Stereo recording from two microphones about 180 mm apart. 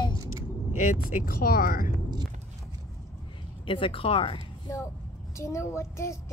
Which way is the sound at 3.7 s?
30° left (ahead or behind).